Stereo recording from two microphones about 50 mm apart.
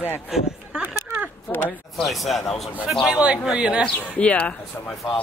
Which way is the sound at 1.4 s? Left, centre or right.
Left.